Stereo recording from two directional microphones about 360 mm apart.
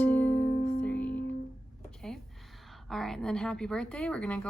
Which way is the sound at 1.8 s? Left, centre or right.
Centre.